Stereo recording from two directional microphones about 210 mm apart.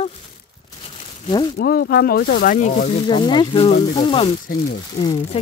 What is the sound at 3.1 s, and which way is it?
Speech, 20° left (ahead or behind).